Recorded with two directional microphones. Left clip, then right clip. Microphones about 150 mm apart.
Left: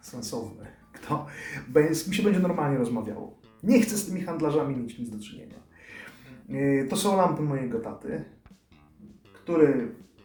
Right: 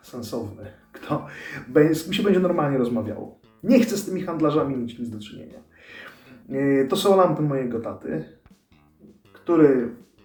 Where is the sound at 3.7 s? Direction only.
40° left (ahead or behind).